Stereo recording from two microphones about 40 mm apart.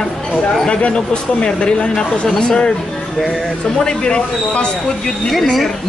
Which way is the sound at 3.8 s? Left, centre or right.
Left.